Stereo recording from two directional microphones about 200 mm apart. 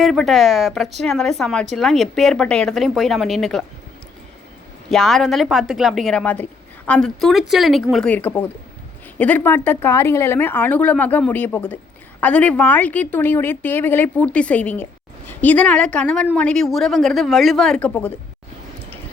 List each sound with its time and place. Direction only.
0.0 s speech: centre (ahead or behind)
4.9 s speech: centre (ahead or behind)